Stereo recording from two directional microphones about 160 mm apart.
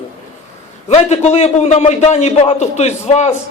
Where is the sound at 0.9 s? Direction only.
45° left (ahead or behind).